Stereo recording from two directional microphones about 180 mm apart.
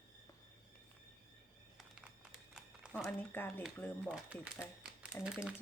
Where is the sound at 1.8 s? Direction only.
5° right (ahead or behind).